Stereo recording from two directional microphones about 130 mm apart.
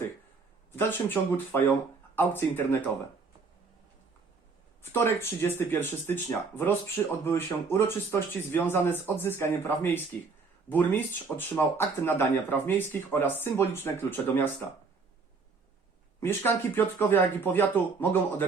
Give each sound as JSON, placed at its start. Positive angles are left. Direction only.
{"t": 0.8, "sound": "speech", "side_deg": 15}
{"t": 4.8, "sound": "speech", "side_deg": 20}
{"t": 16.2, "sound": "speech", "side_deg": 15}